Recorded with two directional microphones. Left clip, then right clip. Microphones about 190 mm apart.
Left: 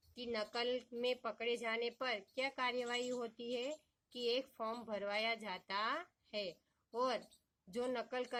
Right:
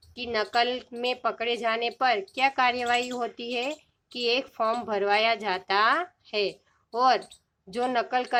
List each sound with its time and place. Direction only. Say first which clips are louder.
0.1 s a woman's voice: right 15 dB; 15° left (ahead or behind)